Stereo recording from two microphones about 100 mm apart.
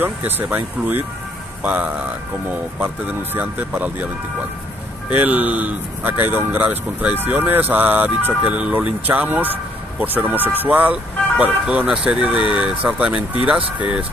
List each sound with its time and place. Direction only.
0.0 s speech: 20° right (ahead or behind)
5.1 s speech: 15° right (ahead or behind)